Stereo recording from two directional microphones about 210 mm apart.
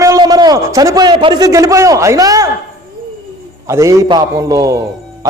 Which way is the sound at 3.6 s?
15° right (ahead or behind).